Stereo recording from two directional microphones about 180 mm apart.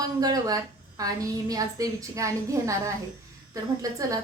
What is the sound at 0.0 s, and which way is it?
A woman's voice, 20° right (ahead or behind).